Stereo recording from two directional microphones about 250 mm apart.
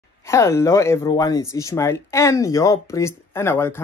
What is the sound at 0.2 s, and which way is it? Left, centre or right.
Speech, centre.